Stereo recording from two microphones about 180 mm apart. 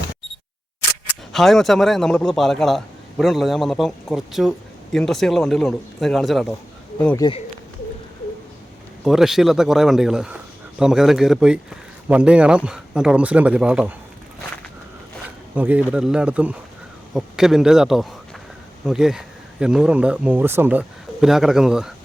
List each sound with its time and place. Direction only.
1.3 s a man's voice: centre (ahead or behind)
9.0 s a man's voice: centre (ahead or behind)
15.5 s a man's voice: 10° right (ahead or behind)